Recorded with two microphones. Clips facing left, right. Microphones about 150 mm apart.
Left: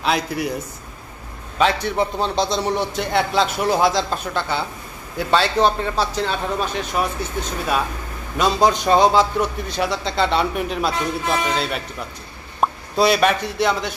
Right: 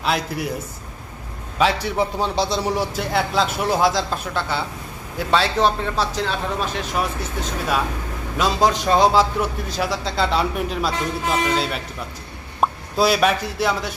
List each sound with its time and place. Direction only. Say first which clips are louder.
0.0 s a man's voice: left 2 dB; centre (ahead or behind)
1.6 s a man's voice: left 1 dB; 5° right (ahead or behind)
8.4 s a man's voice: left 2 dB; centre (ahead or behind)